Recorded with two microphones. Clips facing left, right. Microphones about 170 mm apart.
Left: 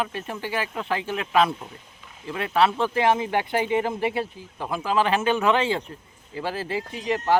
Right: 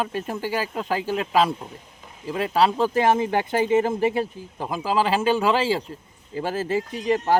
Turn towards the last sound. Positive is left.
turn(degrees=-45)  # may be behind; listen again after turning